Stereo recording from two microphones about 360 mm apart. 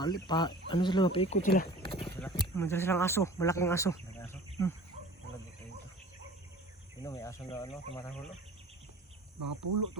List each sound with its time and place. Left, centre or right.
0.0 s speech: centre
7.0 s speech: centre
9.4 s speech: right